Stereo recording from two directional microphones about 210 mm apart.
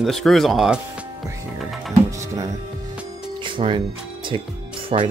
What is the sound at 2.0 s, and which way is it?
Music, 15° right (ahead or behind).